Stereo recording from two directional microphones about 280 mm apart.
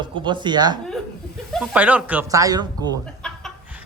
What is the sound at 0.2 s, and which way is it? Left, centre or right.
Speech, centre.